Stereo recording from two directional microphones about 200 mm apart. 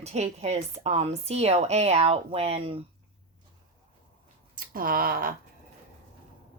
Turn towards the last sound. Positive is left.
turn(degrees=-45)  # may be behind; listen again after turning